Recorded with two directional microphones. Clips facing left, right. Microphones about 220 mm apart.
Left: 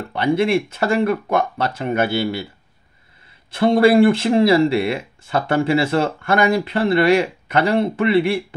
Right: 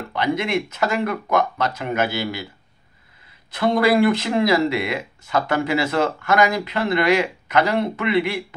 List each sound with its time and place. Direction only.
0.1 s speech: 30° left (ahead or behind)
3.5 s speech: 30° left (ahead or behind)